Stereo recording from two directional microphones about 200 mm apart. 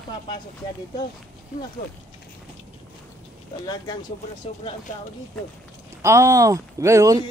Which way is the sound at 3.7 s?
20° left (ahead or behind).